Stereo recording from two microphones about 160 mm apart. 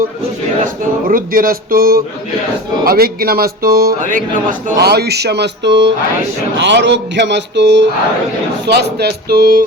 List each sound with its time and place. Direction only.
0.6 s a sound: 60° right (ahead or behind)
2.8 s speech: 70° right (ahead or behind)
4.8 s a man's voice: 90° right; by 9.6 s 70° right (ahead or behind)